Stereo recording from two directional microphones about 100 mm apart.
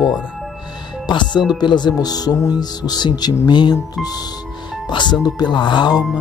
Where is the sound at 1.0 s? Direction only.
50° left (ahead or behind).